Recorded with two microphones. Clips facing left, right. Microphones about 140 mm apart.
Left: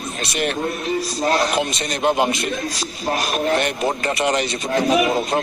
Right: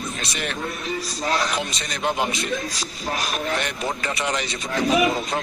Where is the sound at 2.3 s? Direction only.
70° left (ahead or behind).